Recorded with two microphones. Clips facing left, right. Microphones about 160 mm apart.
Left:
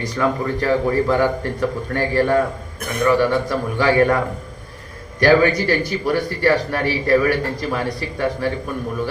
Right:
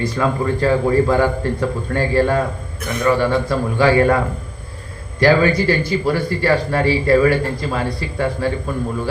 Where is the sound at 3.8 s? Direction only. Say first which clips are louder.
Right 1 dB; 20° right (ahead or behind).